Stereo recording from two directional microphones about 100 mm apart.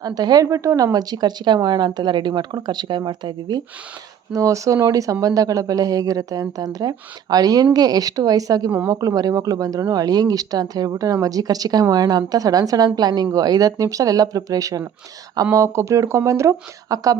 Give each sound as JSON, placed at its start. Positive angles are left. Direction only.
{"t": 0.0, "sound": "speech", "side_deg": -40}
{"t": 4.3, "sound": "speech", "side_deg": -35}